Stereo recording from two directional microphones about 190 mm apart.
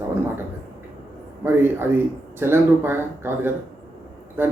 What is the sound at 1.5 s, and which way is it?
A man's voice, 10° right (ahead or behind).